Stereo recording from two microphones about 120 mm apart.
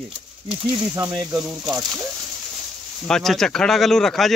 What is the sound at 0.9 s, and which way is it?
Speech, 30° right (ahead or behind).